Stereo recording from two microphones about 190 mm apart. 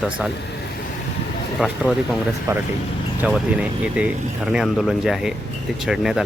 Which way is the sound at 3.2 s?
5° right (ahead or behind).